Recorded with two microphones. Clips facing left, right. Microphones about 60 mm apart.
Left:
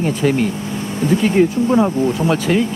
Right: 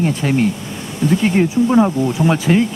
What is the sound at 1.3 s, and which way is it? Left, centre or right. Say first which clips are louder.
Speech: right 1 dB; centre.